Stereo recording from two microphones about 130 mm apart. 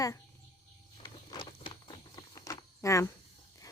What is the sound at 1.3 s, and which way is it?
Walk, 35° left (ahead or behind).